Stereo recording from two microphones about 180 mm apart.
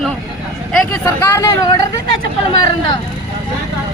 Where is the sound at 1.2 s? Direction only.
15° left (ahead or behind).